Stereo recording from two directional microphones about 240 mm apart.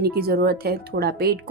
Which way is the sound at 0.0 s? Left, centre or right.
Right.